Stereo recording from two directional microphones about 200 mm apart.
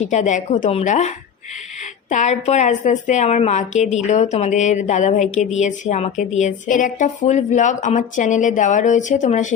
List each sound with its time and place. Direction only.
0.0 s a woman's voice: 35° left (ahead or behind)